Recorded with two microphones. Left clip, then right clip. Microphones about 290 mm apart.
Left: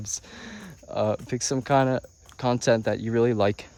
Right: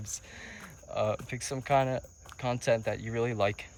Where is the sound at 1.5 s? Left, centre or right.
Left.